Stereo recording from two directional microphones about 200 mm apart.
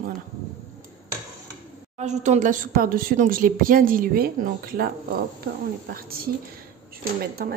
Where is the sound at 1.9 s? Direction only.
35° right (ahead or behind).